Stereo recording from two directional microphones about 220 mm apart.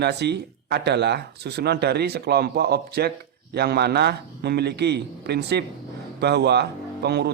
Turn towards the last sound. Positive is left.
turn(degrees=-50)  # may be behind; listen again after turning